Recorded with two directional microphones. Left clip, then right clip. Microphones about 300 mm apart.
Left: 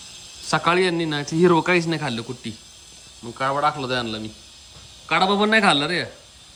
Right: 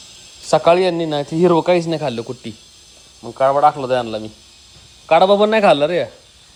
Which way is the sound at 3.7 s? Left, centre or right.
Centre.